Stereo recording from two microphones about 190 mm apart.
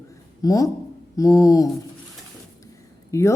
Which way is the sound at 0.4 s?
15° left (ahead or behind).